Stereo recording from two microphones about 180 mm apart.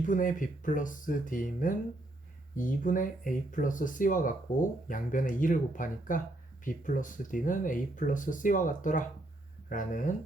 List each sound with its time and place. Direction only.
0.0 s speech: 50° left (ahead or behind)